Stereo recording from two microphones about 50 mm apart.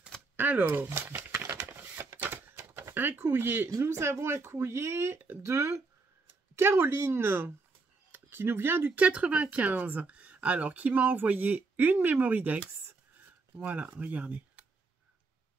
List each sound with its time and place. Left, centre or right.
0.4 s speech: right
1.3 s a sound: right
1.7 s a sound: right
2.9 s speech: right
5.4 s speech: right
6.5 s speech: right
8.9 s speech: right
12.8 s a sound: right
13.9 s speech: right